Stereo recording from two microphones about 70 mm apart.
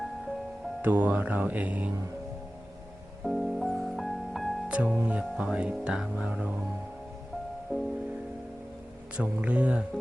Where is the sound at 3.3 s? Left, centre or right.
Centre.